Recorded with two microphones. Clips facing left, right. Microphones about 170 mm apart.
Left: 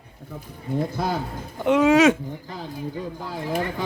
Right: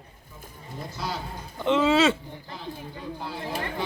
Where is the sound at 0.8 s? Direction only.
50° left (ahead or behind).